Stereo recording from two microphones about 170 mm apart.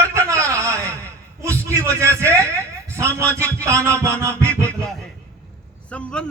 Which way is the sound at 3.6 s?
15° right (ahead or behind).